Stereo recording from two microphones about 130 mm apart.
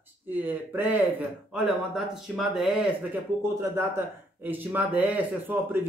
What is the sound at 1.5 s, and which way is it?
Speech, centre (ahead or behind).